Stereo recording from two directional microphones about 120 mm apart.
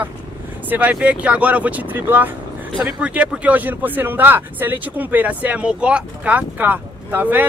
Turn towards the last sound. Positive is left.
turn(degrees=-15)  # may be behind; listen again after turning